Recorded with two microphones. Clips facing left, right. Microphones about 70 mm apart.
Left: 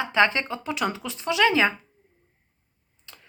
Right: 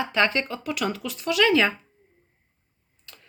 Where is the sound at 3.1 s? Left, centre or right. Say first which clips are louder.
Left 1 dB; left.